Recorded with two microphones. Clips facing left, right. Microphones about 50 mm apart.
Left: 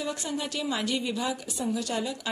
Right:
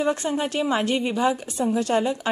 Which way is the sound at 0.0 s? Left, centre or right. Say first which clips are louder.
Right 9 dB; right.